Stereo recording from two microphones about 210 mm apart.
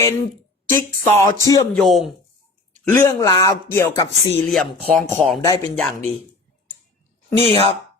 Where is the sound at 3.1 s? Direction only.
15° left (ahead or behind).